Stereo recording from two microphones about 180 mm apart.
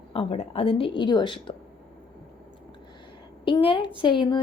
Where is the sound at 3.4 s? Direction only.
30° left (ahead or behind).